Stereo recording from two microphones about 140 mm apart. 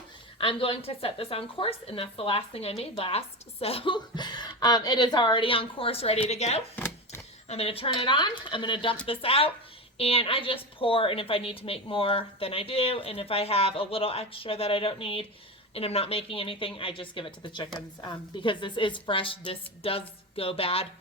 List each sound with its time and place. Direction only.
0.3 s a woman's voice: 40° left (ahead or behind)